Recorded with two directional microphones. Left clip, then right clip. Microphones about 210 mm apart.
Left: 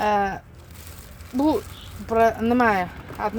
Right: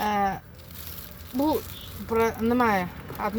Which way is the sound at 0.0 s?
40° left (ahead or behind).